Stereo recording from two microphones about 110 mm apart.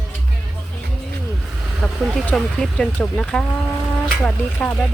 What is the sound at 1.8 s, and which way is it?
Speech, 5° left (ahead or behind).